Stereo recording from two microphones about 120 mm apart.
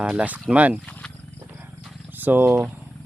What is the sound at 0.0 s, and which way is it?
Speech, 10° right (ahead or behind).